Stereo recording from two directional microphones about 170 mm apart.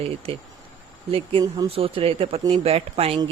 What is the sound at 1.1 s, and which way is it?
Speech, 30° right (ahead or behind).